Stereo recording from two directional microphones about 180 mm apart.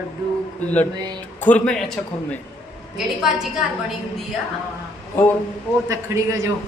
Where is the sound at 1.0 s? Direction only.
20° right (ahead or behind).